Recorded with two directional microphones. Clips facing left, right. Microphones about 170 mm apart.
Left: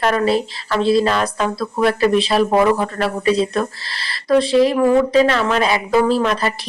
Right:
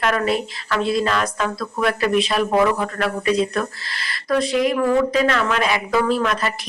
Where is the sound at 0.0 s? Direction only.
30° left (ahead or behind).